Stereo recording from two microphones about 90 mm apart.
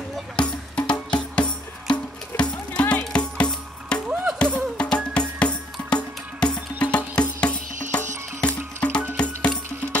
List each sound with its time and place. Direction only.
0.1 s music: 10° left (ahead or behind)
4.1 s music: 25° right (ahead or behind)
4.4 s music: 10° left (ahead or behind)